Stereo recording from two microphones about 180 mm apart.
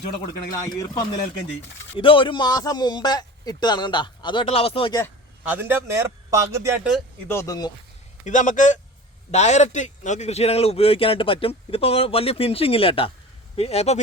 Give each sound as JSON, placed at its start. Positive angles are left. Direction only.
{"t": 0.5, "sound": "a man's voice", "side_deg": 20}
{"t": 5.6, "sound": "speech", "side_deg": -15}
{"t": 7.3, "sound": "a man's voice", "side_deg": 15}
{"t": 8.2, "sound": "a man's voice", "side_deg": 45}